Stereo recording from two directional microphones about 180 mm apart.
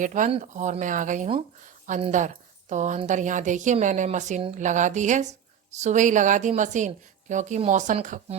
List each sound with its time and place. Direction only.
0.0 s a woman's voice: 45° right (ahead or behind)